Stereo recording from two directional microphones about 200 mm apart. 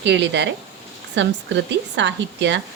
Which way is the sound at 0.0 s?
60° right (ahead or behind).